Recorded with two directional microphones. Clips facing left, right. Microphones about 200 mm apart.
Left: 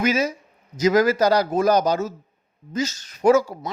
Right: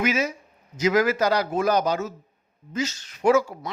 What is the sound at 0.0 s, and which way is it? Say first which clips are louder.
Speech: left 3 dB; 40° left (ahead or behind).